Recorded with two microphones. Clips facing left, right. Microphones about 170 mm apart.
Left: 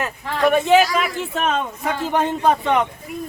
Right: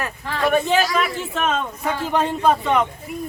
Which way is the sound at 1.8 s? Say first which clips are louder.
Even; 15° left (ahead or behind).